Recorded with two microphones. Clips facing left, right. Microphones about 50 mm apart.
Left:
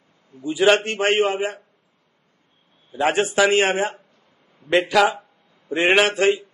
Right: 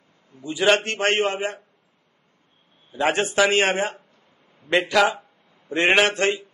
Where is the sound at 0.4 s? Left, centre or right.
Centre.